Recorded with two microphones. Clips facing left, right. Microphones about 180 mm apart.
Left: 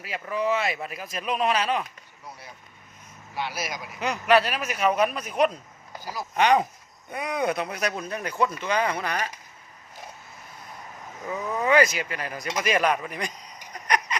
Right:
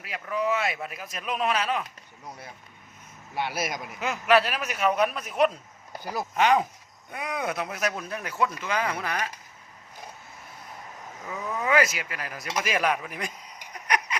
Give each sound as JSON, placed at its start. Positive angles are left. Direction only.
{"t": 0.0, "sound": "speech", "side_deg": 0}
{"t": 3.3, "sound": "speech", "side_deg": -55}
{"t": 4.0, "sound": "speech", "side_deg": 0}
{"t": 6.0, "sound": "speech", "side_deg": -55}
{"t": 6.3, "sound": "speech", "side_deg": 0}
{"t": 11.6, "sound": "speech", "side_deg": -5}
{"t": 12.6, "sound": "a sound", "side_deg": -5}